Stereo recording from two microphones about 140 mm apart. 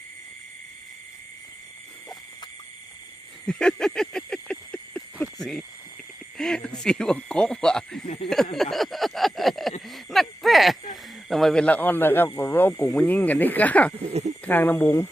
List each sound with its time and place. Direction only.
3.4 s a sound: 5° left (ahead or behind)
6.3 s speech: 5° left (ahead or behind)
8.0 s speech: 55° left (ahead or behind)
8.5 s a sound: centre (ahead or behind)
11.3 s speech: centre (ahead or behind)
14.1 s speech: 50° right (ahead or behind)
14.4 s speech: 15° left (ahead or behind)